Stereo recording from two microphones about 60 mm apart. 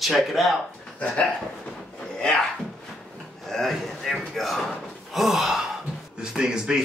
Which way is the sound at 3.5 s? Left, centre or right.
Centre.